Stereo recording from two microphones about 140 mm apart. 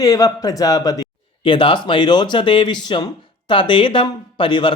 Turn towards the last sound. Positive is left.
turn(degrees=35)  # may be behind; listen again after turning